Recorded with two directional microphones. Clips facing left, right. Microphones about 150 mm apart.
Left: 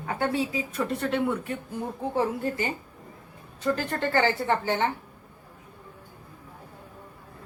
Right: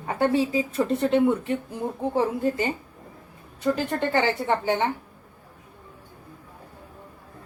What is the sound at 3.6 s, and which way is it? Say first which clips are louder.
A woman's voice: right 3 dB; 15° right (ahead or behind).